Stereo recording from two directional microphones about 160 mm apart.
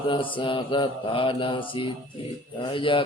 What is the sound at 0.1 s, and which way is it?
Speech, 30° left (ahead or behind).